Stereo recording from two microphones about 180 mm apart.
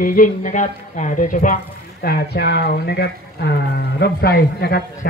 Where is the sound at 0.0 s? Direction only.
50° left (ahead or behind).